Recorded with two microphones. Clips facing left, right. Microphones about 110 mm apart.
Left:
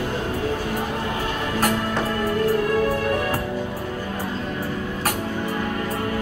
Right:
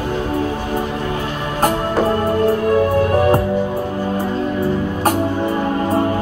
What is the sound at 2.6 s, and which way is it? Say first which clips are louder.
Music: right 6 dB; 30° right (ahead or behind).